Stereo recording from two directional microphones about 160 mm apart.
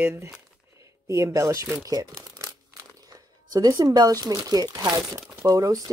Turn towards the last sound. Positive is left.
turn(degrees=-20)  # may be behind; listen again after turning